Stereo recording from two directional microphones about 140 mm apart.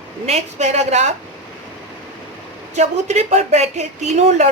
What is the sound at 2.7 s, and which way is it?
Speech, 55° right (ahead or behind).